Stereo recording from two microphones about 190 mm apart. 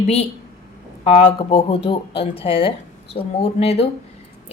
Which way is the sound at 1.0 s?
30° left (ahead or behind).